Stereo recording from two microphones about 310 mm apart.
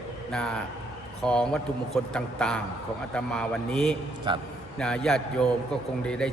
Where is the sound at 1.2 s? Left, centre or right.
Centre.